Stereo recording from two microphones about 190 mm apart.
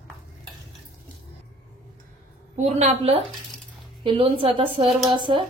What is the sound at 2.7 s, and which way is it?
A woman's voice, 35° right (ahead or behind).